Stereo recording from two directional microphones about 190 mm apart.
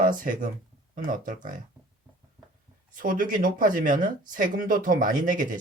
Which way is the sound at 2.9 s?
45° right (ahead or behind).